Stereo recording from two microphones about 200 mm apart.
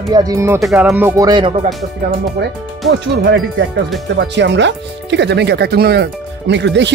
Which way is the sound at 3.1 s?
55° right (ahead or behind).